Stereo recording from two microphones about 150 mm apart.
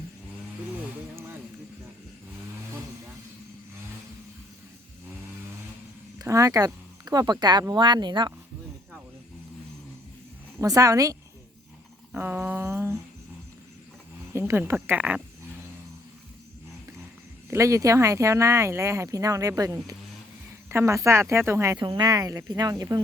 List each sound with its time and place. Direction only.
6.1 s speech: 20° right (ahead or behind)
10.6 s speech: 20° right (ahead or behind)
12.1 s a sound: 10° right (ahead or behind)
14.3 s speech: 15° right (ahead or behind)
17.5 s speech: 20° right (ahead or behind)
21.8 s speech: 30° right (ahead or behind)